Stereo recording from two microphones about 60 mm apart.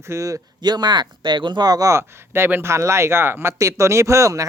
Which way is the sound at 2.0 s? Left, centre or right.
Right.